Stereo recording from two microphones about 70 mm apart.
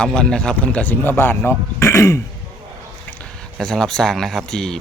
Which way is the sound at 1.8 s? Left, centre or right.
Left.